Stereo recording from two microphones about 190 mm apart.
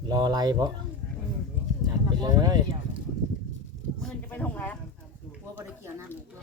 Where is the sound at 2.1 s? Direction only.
20° right (ahead or behind).